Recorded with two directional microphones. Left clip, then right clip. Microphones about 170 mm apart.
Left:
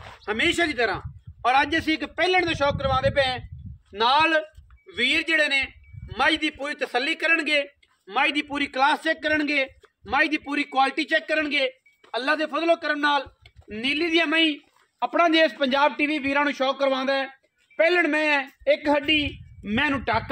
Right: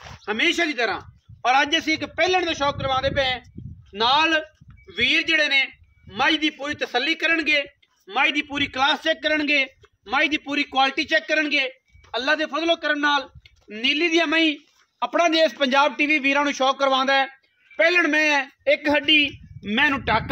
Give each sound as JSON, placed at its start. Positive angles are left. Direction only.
{"t": 0.2, "sound": "a man's voice", "side_deg": -25}
{"t": 15.0, "sound": "a man's voice", "side_deg": -55}